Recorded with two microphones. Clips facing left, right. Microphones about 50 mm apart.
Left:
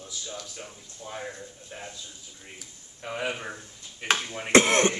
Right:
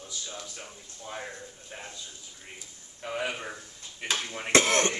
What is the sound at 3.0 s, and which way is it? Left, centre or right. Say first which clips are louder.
Speech: left 1 dB; centre.